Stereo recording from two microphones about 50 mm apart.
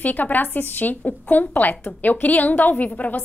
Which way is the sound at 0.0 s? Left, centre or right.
Left.